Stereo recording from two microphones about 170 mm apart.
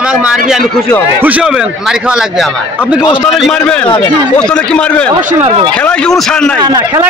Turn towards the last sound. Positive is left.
turn(degrees=-20)  # may be behind; listen again after turning